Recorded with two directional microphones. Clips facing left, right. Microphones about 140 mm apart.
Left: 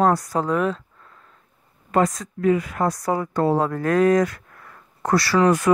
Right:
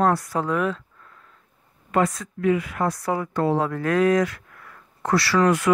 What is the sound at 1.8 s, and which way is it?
Speech, 40° left (ahead or behind).